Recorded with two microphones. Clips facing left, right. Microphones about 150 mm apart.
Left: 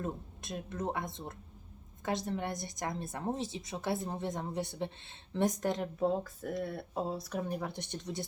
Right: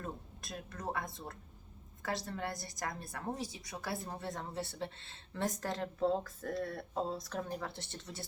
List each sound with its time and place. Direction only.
0.0 s a woman's voice: 20° left (ahead or behind)